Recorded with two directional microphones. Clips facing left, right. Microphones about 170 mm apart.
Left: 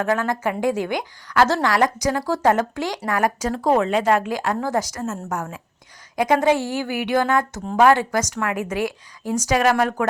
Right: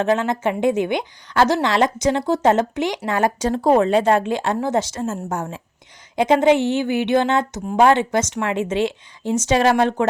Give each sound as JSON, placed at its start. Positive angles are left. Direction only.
{"t": 0.0, "sound": "a woman's voice", "side_deg": -25}